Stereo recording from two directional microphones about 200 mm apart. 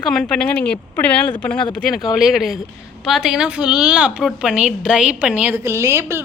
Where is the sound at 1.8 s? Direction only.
Centre (ahead or behind).